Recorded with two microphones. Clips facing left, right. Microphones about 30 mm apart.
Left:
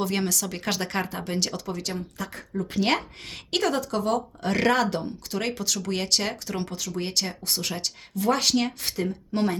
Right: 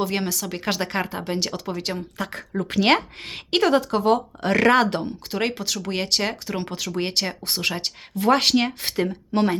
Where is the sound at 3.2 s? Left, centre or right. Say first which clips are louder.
Right 5 dB; right.